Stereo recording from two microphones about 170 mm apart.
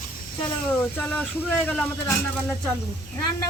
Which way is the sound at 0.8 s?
10° left (ahead or behind).